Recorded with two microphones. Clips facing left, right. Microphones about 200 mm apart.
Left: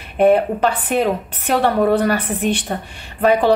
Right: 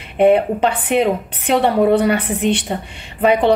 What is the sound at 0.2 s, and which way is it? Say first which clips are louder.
A woman's voice: right 1 dB; 20° right (ahead or behind).